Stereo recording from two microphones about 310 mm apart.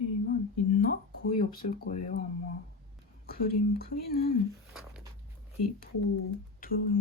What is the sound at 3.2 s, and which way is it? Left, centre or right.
Whispering, left.